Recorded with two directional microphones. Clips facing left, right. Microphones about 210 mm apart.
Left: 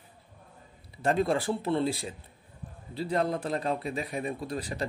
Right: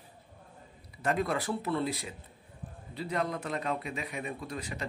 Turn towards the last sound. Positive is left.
turn(degrees=35)  # may be behind; listen again after turning